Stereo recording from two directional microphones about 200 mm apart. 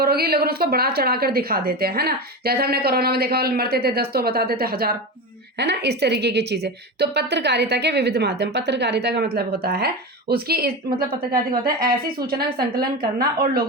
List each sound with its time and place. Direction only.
0.0 s a woman's voice: 50° right (ahead or behind)